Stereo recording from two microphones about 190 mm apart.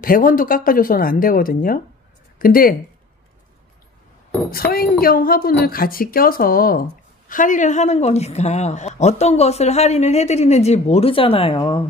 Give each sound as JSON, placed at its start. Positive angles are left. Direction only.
{"t": 0.0, "sound": "speech", "side_deg": 50}
{"t": 4.5, "sound": "a woman's voice", "side_deg": 50}